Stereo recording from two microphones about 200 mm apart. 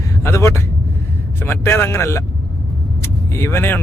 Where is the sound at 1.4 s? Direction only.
10° left (ahead or behind).